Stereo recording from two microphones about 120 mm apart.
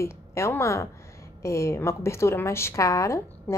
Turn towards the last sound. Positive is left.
turn(degrees=25)  # may be behind; listen again after turning